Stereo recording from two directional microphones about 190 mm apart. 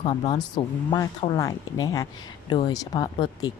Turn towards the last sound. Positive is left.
turn(degrees=20)  # may be behind; listen again after turning